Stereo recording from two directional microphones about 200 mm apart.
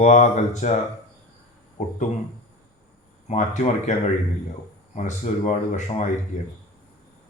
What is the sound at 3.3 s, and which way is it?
Speech, 35° left (ahead or behind).